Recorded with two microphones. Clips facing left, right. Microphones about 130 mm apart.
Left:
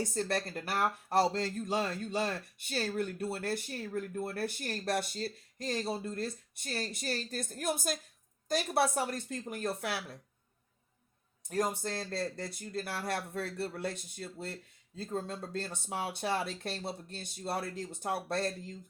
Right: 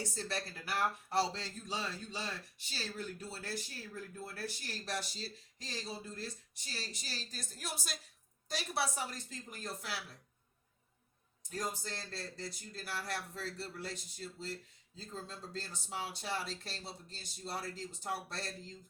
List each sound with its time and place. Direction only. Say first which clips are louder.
0.0 s speech: left 7 dB; 55° left (ahead or behind)
11.4 s speech: left 8 dB; 60° left (ahead or behind)